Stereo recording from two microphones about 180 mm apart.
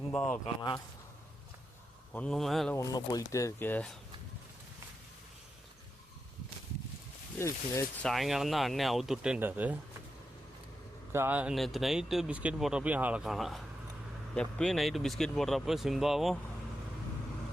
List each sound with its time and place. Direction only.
0.1 s speech: 5° left (ahead or behind)
0.4 s speech: 25° left (ahead or behind)
2.1 s speech: 5° left (ahead or behind)
2.7 s speech: 20° left (ahead or behind)
7.3 s speech: 15° left (ahead or behind)
8.0 s speech: centre (ahead or behind)
11.1 s speech: 10° right (ahead or behind)